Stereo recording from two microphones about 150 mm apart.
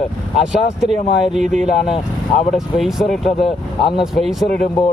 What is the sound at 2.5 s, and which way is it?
Speech, centre (ahead or behind).